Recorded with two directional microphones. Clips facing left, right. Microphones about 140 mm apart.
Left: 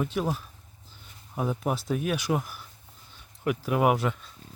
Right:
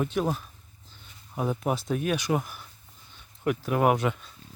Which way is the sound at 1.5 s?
Centre (ahead or behind).